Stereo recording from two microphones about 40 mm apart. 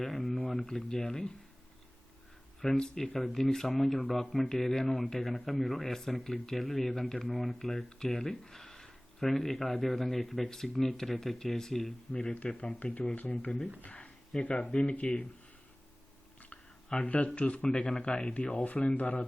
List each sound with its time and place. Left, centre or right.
0.0 s speech: centre
2.6 s speech: centre
12.3 s speech: left
16.9 s speech: left
17.7 s speech: left